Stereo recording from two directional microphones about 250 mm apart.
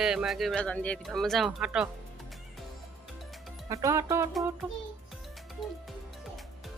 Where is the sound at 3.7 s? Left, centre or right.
Centre.